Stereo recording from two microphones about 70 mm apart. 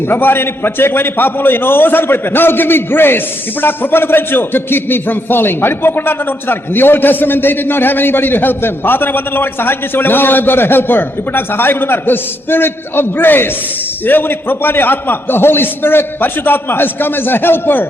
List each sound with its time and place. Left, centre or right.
0.0 s a man's voice: left